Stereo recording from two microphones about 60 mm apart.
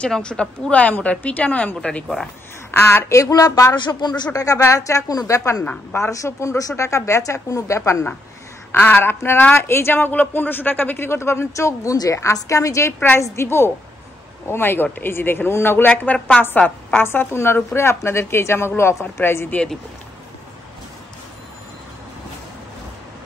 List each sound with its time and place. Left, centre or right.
0.1 s a woman's voice: centre
2.7 s speech: left
3.1 s a sound: left
4.3 s a woman's voice: left
8.7 s a man's voice: left
9.9 s speech: left
11.1 s a woman's voice: left
13.2 s a man's voice: left
15.9 s a woman's voice: left
17.0 s a man's voice: left